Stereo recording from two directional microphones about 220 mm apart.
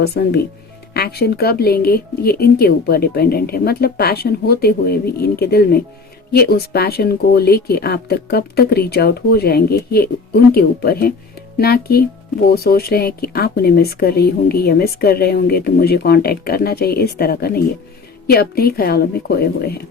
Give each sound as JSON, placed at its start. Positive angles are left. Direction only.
{"t": 0.0, "sound": "speech", "side_deg": 50}